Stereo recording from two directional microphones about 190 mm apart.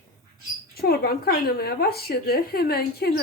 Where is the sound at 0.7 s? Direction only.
55° left (ahead or behind).